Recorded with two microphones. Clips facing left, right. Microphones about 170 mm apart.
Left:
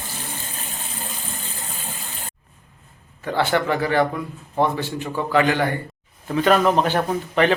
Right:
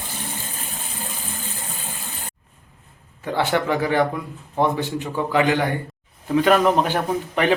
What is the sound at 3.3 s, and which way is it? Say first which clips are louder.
Speech: even; 15° right (ahead or behind).